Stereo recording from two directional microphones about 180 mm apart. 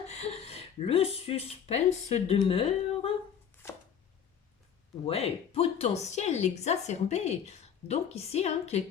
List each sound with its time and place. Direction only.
0.1 s speech: 35° left (ahead or behind)
3.6 s chopping: 10° left (ahead or behind)
5.0 s a woman's voice: 35° left (ahead or behind)